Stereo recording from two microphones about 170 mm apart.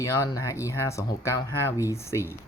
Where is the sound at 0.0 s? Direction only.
20° left (ahead or behind).